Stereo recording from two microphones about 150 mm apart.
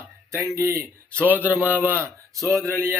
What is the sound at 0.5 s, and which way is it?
Speech, 20° right (ahead or behind).